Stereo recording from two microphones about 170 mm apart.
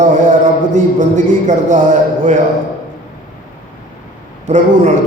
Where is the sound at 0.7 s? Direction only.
45° right (ahead or behind).